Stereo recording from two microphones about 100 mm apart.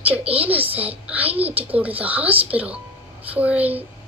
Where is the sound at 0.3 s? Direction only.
15° right (ahead or behind).